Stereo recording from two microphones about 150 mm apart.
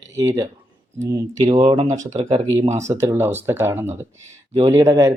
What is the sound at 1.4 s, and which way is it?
Speech, 35° right (ahead or behind).